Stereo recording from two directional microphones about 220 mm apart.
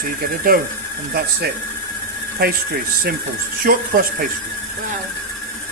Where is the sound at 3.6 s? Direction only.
40° right (ahead or behind).